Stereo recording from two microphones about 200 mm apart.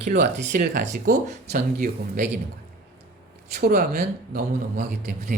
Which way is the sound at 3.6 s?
50° right (ahead or behind).